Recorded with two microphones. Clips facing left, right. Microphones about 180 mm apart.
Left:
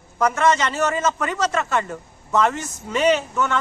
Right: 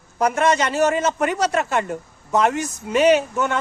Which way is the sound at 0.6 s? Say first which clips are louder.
Right 3 dB; 15° right (ahead or behind).